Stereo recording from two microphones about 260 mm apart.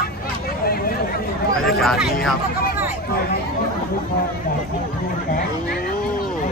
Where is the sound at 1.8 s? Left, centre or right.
Centre.